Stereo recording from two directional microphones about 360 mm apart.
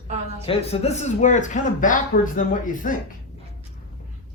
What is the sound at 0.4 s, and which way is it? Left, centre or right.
A man's voice, centre.